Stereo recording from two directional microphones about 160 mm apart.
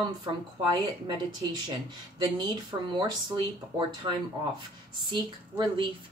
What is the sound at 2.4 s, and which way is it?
A woman's voice, 25° right (ahead or behind).